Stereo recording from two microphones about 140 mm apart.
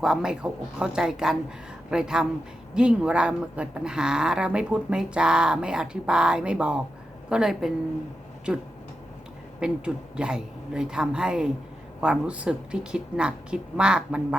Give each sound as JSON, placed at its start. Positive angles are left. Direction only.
{"t": 0.0, "sound": "speech", "side_deg": -5}
{"t": 9.6, "sound": "speech", "side_deg": -5}